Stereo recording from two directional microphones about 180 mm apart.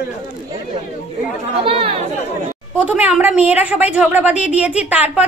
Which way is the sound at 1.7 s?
30° right (ahead or behind).